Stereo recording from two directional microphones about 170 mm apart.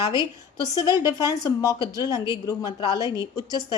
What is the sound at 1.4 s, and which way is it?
Speech, 25° left (ahead or behind).